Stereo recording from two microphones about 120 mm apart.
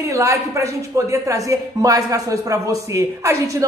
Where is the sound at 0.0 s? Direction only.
25° right (ahead or behind).